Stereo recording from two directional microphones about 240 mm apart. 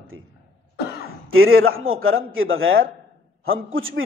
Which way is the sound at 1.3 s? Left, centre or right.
Right.